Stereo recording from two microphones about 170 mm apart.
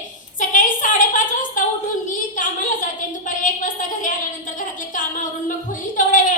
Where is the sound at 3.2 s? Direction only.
50° left (ahead or behind).